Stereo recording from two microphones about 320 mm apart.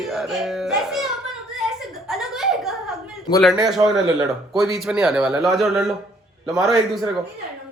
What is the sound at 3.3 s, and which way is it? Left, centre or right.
A child's voice, centre.